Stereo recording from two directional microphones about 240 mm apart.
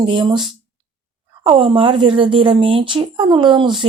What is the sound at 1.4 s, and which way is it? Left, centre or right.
Speech, right.